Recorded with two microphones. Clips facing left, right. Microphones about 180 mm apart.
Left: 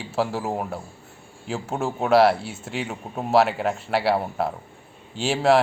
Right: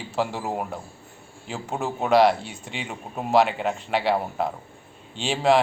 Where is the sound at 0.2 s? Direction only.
5° left (ahead or behind).